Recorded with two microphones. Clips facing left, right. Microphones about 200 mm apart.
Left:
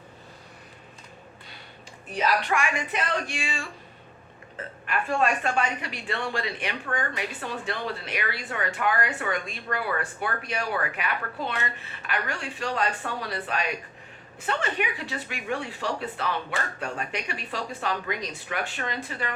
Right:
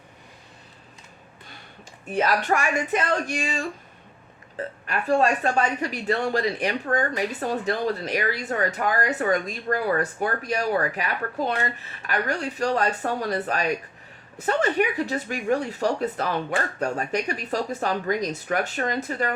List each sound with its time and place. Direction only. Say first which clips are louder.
2.1 s speech: right 3 dB; 40° right (ahead or behind)